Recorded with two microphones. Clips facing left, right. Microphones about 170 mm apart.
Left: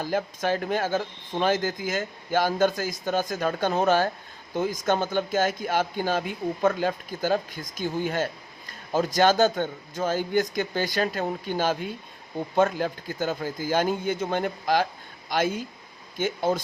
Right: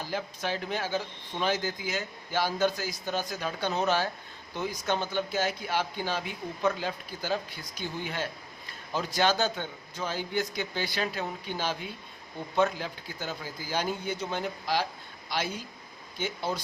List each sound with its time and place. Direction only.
0.0 s speech: 50° left (ahead or behind)